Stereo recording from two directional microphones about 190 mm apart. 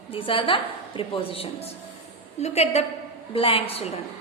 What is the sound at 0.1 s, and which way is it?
A woman's voice, 30° left (ahead or behind).